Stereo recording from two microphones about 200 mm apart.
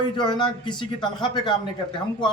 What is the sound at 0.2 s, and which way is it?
A man's voice, 20° left (ahead or behind).